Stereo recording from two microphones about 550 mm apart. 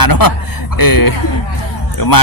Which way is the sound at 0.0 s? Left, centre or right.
Left.